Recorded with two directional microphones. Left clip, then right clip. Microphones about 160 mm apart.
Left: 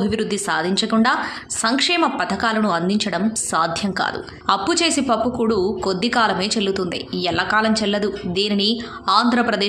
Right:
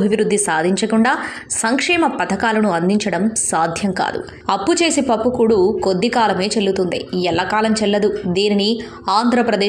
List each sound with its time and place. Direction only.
0.0 s a woman's voice: 15° right (ahead or behind)